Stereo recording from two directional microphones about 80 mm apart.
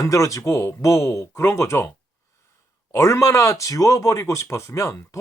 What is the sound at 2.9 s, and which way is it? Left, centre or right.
Speech, left.